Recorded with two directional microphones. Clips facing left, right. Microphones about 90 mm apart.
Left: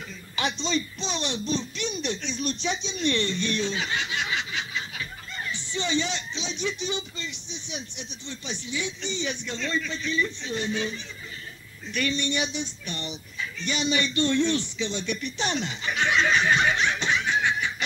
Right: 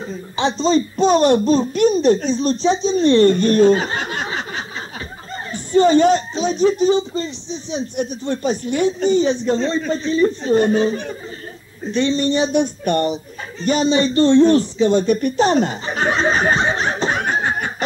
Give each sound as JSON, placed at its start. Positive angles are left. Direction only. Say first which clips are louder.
{"t": 0.1, "sound": "a child's voice", "louder": "right 9 dB", "side_deg": -35}
{"t": 7.9, "sound": "a child's voice", "louder": "right 17 dB", "side_deg": -50}
{"t": 12.5, "sound": "a child's voice", "louder": "right 17 dB", "side_deg": -55}
{"t": 17.2, "sound": "laughter", "louder": "right 5 dB", "side_deg": -45}